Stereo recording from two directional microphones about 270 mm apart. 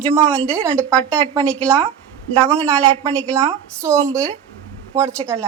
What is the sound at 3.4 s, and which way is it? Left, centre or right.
A woman's voice, centre.